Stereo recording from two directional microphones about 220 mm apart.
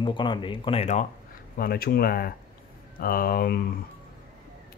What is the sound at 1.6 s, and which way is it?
Speech, 40° left (ahead or behind).